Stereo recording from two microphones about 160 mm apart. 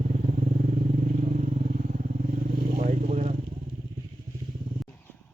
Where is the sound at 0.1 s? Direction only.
50° right (ahead or behind).